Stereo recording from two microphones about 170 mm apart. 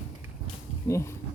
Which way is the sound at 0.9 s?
15° left (ahead or behind).